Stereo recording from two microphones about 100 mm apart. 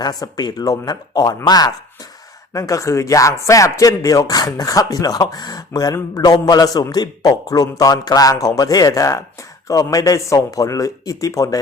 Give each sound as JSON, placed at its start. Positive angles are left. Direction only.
{"t": 0.0, "sound": "speech", "side_deg": 40}